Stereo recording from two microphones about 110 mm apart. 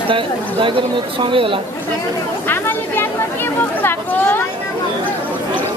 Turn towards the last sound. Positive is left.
turn(degrees=15)  # may be behind; listen again after turning